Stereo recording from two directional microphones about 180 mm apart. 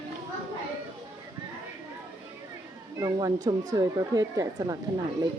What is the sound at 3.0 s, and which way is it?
Speech, 20° right (ahead or behind).